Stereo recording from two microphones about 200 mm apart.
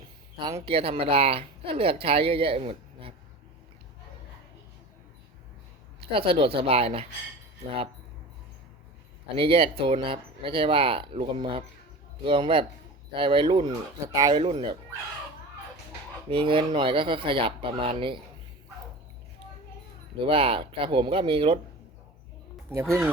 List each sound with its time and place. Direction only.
0.6 s speech: 30° right (ahead or behind)
6.0 s speech: 25° right (ahead or behind)
9.3 s speech: 25° right (ahead or behind)
16.3 s speech: 25° right (ahead or behind)
20.2 s speech: 30° right (ahead or behind)
22.7 s speech: 15° right (ahead or behind)